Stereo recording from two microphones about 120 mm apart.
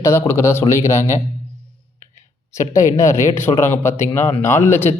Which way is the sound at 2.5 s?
25° left (ahead or behind).